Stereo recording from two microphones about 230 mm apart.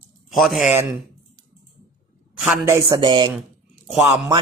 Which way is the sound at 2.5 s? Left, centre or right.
Centre.